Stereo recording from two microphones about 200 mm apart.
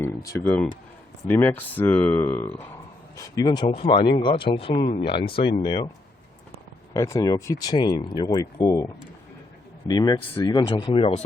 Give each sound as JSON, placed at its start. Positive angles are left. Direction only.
{"t": 0.0, "sound": "music", "side_deg": 15}
{"t": 0.3, "sound": "speech", "side_deg": 5}
{"t": 6.9, "sound": "speech", "side_deg": 15}